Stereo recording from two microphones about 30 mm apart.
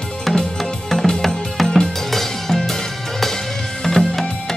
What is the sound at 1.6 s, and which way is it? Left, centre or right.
Music, left.